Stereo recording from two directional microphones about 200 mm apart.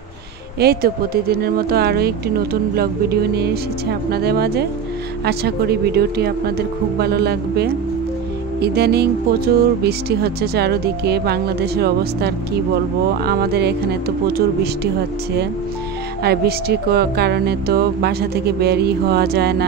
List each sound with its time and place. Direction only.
0.6 s speech: 50° right (ahead or behind)
16.2 s speech: 50° right (ahead or behind)